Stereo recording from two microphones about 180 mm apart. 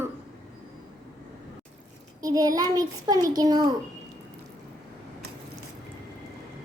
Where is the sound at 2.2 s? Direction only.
20° right (ahead or behind).